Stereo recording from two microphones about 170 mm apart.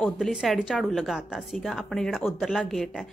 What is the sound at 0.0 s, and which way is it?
Speech, centre (ahead or behind).